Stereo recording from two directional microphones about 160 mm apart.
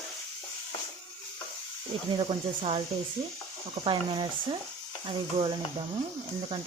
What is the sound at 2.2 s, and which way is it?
Speech, 35° right (ahead or behind).